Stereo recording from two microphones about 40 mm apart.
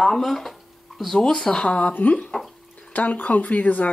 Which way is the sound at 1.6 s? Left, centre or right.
Left.